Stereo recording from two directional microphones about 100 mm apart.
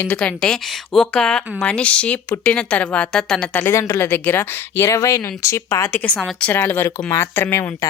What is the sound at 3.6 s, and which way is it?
A woman's voice, 25° left (ahead or behind).